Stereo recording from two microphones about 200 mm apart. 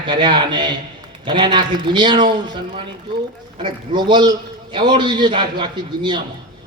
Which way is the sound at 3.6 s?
25° right (ahead or behind).